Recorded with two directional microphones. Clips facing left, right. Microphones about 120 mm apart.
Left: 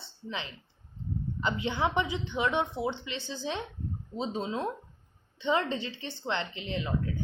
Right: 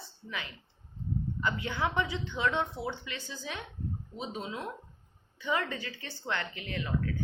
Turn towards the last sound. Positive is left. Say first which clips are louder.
# left 2 dB
turn(degrees=20)  # may be behind; listen again after turning